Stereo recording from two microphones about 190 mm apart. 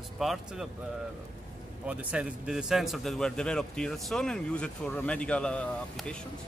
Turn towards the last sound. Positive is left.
turn(degrees=5)  # may be behind; listen again after turning